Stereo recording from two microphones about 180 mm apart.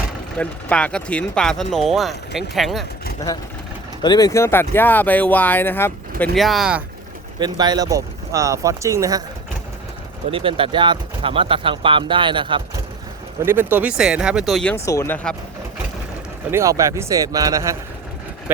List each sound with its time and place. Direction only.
0.3 s speech: 5° left (ahead or behind)
4.0 s speech: 20° left (ahead or behind); by 6.8 s 5° right (ahead or behind)
7.3 s speech: 25° right (ahead or behind)
10.3 s speech: 30° right (ahead or behind)
13.4 s speech: 10° right (ahead or behind); by 14.8 s 5° left (ahead or behind)
14.8 s speech: 15° left (ahead or behind)
16.5 s speech: 15° right (ahead or behind)